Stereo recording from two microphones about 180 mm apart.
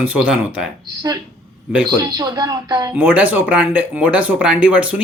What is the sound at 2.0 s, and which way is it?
Speech, 20° right (ahead or behind).